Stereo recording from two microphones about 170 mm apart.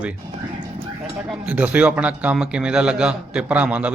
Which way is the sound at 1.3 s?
10° right (ahead or behind).